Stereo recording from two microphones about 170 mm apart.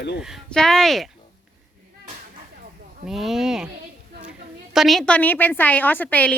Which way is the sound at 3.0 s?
Centre (ahead or behind).